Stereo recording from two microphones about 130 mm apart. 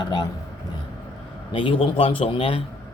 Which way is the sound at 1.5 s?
45° left (ahead or behind).